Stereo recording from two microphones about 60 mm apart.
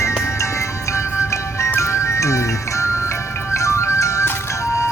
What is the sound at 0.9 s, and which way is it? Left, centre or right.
Music, left.